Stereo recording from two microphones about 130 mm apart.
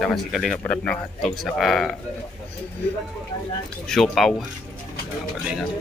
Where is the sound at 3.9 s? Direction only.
Centre (ahead or behind).